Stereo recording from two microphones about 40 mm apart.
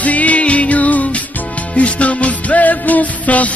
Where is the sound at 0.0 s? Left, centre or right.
Left.